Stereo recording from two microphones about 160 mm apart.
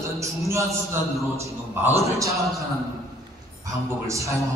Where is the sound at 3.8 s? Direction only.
20° right (ahead or behind).